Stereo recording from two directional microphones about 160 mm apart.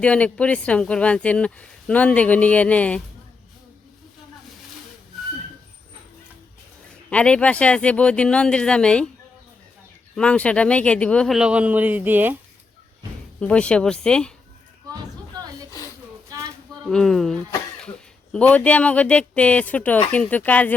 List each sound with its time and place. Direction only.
0.0 s speech: 10° left (ahead or behind)
7.1 s speech: 5° left (ahead or behind)
10.2 s speech: 5° left (ahead or behind)
11.3 s a man's voice: 5° right (ahead or behind)
13.4 s speech: 5° left (ahead or behind)
16.8 s speech: 5° left (ahead or behind)